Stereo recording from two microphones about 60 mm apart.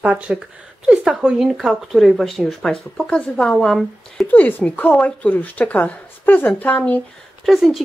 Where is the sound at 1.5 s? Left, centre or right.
Centre.